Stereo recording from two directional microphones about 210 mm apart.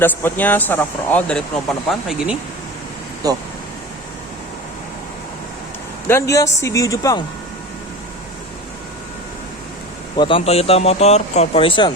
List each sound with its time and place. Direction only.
0.0 s a man's voice: 10° left (ahead or behind)
6.1 s a man's voice: 15° left (ahead or behind)
10.2 s speech: 25° left (ahead or behind)